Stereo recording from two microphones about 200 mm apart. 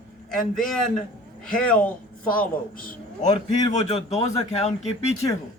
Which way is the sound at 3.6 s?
20° left (ahead or behind).